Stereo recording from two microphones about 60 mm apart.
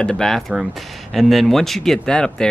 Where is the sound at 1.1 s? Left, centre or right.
Centre.